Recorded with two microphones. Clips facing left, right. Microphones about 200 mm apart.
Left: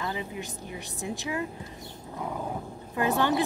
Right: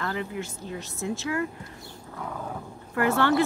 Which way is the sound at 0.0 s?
15° left (ahead or behind).